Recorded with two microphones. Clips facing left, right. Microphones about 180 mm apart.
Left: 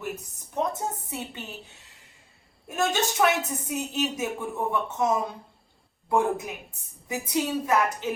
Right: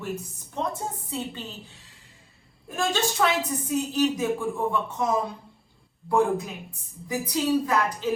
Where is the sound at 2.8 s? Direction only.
20° left (ahead or behind).